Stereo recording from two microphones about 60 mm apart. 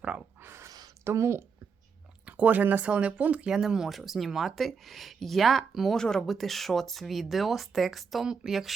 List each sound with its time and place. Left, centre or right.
0.4 s a sound: right
1.0 s a woman's voice: right
2.2 s speech: right
3.5 s speech: centre